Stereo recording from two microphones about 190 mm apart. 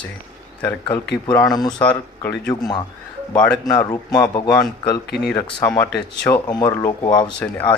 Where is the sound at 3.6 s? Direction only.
20° left (ahead or behind).